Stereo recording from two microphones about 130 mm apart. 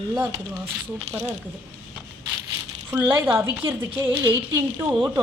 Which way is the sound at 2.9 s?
15° right (ahead or behind).